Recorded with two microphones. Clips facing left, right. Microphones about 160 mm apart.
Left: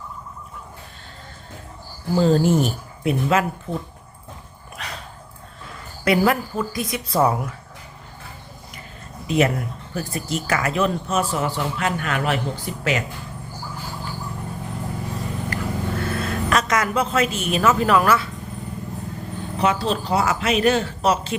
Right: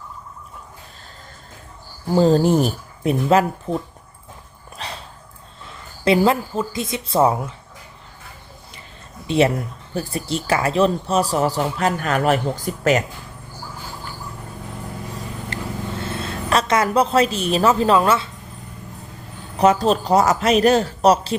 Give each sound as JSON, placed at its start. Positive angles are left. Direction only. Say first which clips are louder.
{"t": 2.1, "sound": "speech", "louder": "right 2 dB", "side_deg": -35}
{"t": 4.8, "sound": "a sound", "louder": "right 2 dB", "side_deg": -30}
{"t": 6.1, "sound": "a woman's voice", "louder": "right 2 dB", "side_deg": -25}
{"t": 9.2, "sound": "speech", "louder": "right 2 dB", "side_deg": -30}
{"t": 15.5, "sound": "vehicle", "louder": "even", "side_deg": -25}
{"t": 16.0, "sound": "a woman's voice", "louder": "left 3 dB", "side_deg": -25}
{"t": 19.5, "sound": "speech", "louder": "right 6 dB", "side_deg": -40}